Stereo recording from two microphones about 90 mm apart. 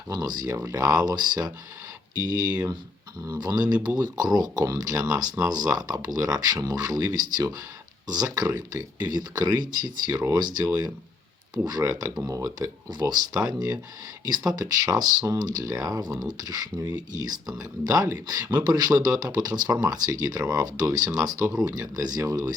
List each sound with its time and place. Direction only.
0.1 s speech: 50° right (ahead or behind)
11.5 s speech: 50° right (ahead or behind)